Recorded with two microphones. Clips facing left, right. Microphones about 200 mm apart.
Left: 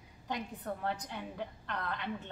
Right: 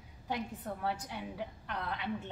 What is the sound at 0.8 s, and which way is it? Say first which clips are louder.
Speech: right 2 dB; 10° right (ahead or behind).